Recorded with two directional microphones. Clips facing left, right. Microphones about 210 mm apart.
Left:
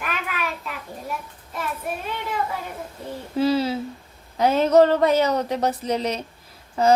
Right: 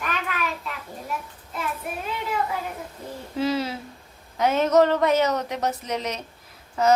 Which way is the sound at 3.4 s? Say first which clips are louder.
Left 4 dB; 30° left (ahead or behind).